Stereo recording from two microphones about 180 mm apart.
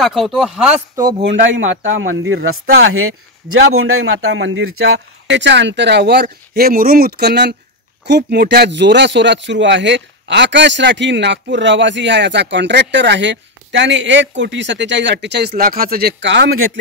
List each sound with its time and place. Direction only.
0.0 s speech: centre (ahead or behind)
1.2 s speech: 90° right; by 6.2 s 65° right (ahead or behind)
6.5 s speech: 55° right (ahead or behind); by 16.6 s 80° right